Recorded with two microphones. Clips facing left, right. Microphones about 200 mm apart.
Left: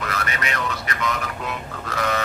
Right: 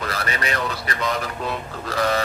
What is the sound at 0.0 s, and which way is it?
Speech, 35° right (ahead or behind).